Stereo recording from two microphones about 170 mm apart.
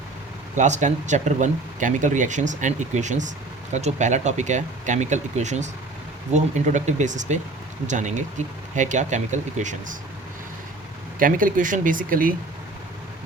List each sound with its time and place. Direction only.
0.5 s speech: 45° right (ahead or behind)
11.2 s speech: 55° right (ahead or behind)